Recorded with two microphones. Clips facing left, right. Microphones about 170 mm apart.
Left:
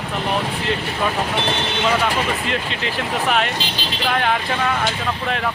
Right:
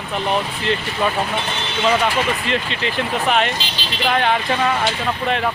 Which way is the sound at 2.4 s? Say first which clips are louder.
Right 2 dB; centre (ahead or behind).